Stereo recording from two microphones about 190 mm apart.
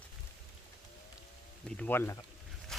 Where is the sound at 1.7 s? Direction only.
10° left (ahead or behind).